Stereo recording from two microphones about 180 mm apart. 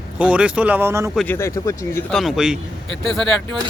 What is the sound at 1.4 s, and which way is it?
Speech, 15° left (ahead or behind).